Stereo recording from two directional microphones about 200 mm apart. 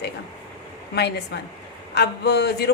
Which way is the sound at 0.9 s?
55° left (ahead or behind).